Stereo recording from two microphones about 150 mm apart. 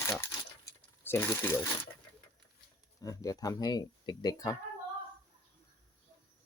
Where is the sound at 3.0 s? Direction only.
25° left (ahead or behind).